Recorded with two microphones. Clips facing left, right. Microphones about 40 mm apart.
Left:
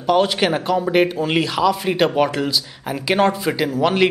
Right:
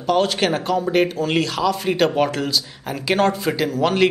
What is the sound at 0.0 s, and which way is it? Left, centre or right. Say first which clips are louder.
Speech: left 2 dB; centre.